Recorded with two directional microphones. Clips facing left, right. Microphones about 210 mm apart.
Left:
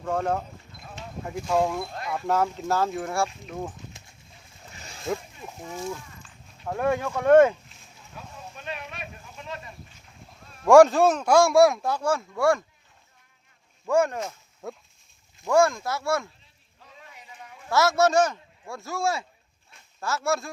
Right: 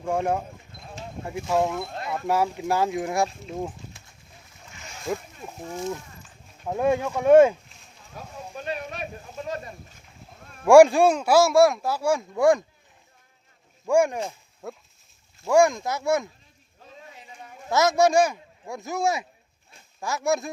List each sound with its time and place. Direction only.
0.0 s speech: 10° right (ahead or behind)
5.7 s speech: 20° right (ahead or behind)
8.1 s a sound: 40° right (ahead or behind)
10.7 s speech: 10° right (ahead or behind)
13.8 s speech: 15° right (ahead or behind)
14.6 s speech: centre (ahead or behind)
15.4 s speech: 15° right (ahead or behind)
17.7 s speech: 20° right (ahead or behind)